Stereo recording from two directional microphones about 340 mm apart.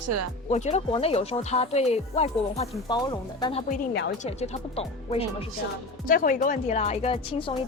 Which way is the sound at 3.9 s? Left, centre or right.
Left.